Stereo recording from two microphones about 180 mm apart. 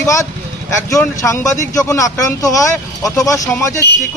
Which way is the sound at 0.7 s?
15° left (ahead or behind).